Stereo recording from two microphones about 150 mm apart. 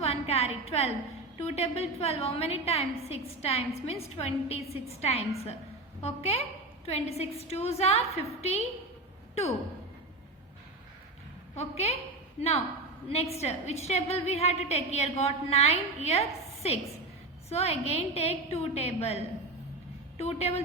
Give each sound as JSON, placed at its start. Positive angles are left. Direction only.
{"t": 0.0, "sound": "a sound", "side_deg": 45}
{"t": 1.4, "sound": "a woman's voice", "side_deg": 45}
{"t": 11.5, "sound": "a woman's voice", "side_deg": 45}
{"t": 17.5, "sound": "a woman's voice", "side_deg": 45}